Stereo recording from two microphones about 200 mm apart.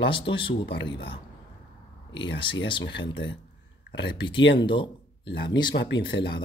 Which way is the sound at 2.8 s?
65° left (ahead or behind).